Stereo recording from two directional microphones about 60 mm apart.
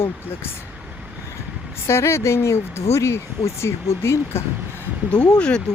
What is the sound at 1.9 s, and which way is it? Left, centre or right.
Speech, left.